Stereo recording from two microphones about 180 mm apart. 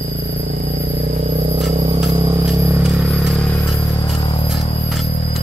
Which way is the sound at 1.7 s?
35° right (ahead or behind).